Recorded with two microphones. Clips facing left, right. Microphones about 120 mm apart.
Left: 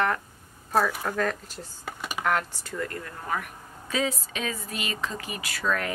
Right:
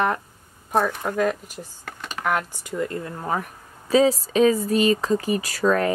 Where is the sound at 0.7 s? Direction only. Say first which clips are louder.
Right 3 dB; 15° right (ahead or behind).